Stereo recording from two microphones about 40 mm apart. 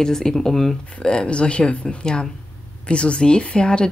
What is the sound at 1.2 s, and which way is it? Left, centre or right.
Speech, left.